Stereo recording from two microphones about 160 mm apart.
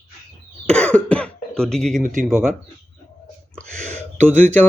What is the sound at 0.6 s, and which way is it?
Cough, 5° left (ahead or behind).